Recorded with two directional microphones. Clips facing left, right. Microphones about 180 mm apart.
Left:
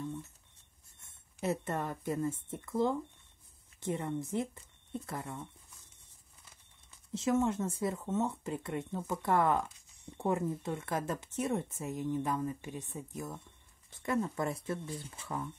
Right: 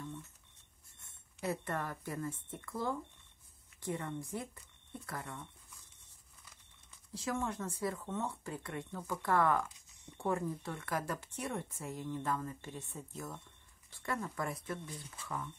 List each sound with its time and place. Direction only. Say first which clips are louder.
1.4 s speech: left 4 dB; 25° left (ahead or behind)
7.1 s speech: left 8 dB; 25° left (ahead or behind)